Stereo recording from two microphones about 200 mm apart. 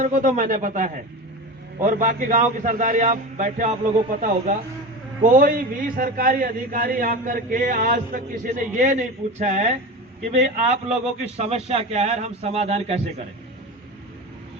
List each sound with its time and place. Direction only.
0.0 s a man's voice: 40° right (ahead or behind)